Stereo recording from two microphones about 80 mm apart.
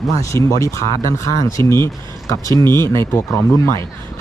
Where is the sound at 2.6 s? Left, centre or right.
Left.